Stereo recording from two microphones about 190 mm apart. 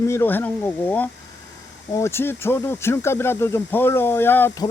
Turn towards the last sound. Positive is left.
turn(degrees=10)  # may be behind; listen again after turning